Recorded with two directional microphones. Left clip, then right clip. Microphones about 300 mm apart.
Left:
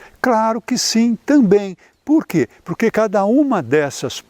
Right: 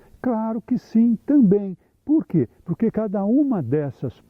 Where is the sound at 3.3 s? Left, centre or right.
Left.